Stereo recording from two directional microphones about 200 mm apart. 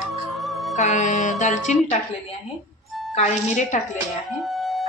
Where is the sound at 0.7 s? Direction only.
35° left (ahead or behind).